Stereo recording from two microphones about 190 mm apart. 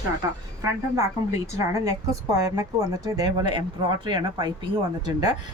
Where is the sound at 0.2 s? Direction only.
20° right (ahead or behind).